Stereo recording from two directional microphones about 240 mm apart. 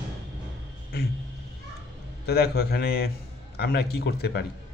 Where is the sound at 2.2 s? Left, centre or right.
Left.